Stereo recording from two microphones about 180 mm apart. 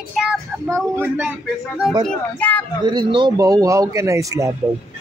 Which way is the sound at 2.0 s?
10° left (ahead or behind).